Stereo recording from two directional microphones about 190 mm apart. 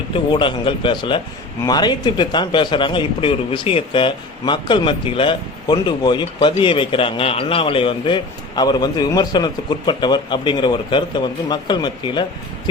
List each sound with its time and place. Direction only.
0.1 s a man's voice: 25° left (ahead or behind)